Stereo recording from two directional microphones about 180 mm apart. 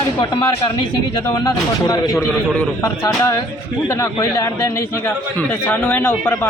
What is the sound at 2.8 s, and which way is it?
A man's voice, 15° left (ahead or behind).